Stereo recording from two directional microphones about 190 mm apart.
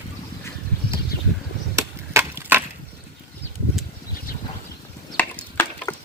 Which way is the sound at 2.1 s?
10° right (ahead or behind).